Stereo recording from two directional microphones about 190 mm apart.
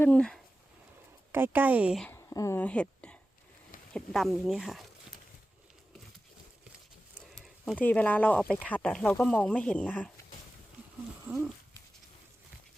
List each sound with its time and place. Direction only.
0.0 s speech: 5° left (ahead or behind)
1.3 s speech: 10° right (ahead or behind)
2.0 s whispering: 15° left (ahead or behind)
3.9 s speech: centre (ahead or behind)
7.3 s speech: centre (ahead or behind)